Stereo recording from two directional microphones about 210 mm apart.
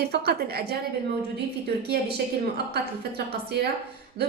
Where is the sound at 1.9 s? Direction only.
50° right (ahead or behind).